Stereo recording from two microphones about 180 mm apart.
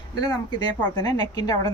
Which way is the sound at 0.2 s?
20° left (ahead or behind).